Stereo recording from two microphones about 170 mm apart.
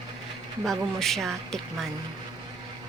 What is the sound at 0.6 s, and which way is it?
Speech, centre (ahead or behind).